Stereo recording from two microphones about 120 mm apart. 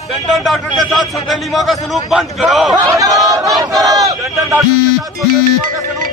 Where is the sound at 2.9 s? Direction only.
30° right (ahead or behind).